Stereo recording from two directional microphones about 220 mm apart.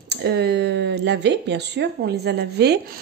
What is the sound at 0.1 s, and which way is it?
A woman's voice, 50° right (ahead or behind).